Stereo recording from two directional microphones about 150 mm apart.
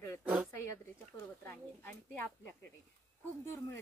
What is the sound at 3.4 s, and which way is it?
Speech, 15° left (ahead or behind).